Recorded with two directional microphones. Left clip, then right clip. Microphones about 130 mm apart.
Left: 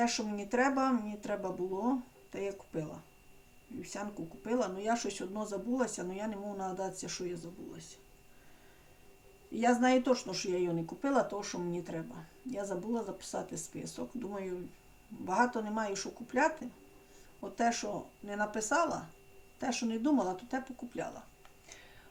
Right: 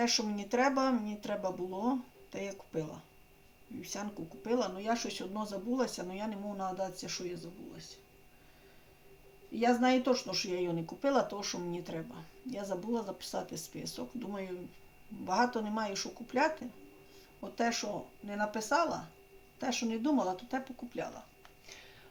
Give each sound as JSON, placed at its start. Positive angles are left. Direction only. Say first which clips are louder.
{"t": 0.0, "sound": "speech", "louder": "right 1 dB", "side_deg": -15}
{"t": 9.6, "sound": "speech", "louder": "left 1 dB", "side_deg": -10}